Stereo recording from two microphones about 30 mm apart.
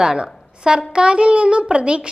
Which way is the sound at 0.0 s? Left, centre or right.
Right.